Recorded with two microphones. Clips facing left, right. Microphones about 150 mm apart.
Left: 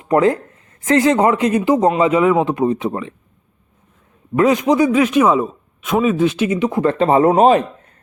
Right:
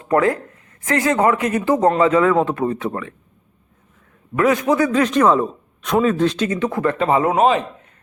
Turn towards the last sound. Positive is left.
turn(degrees=35)  # may be behind; listen again after turning